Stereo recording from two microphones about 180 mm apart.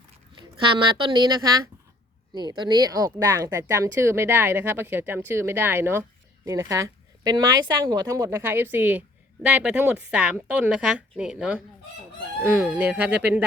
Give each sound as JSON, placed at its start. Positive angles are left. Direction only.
{"t": 0.9, "sound": "speech", "side_deg": -25}